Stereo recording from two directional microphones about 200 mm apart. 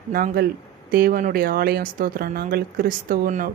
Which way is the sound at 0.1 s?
45° right (ahead or behind).